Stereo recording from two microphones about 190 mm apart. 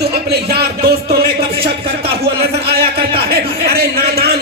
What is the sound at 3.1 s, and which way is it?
Speech, 55° right (ahead or behind).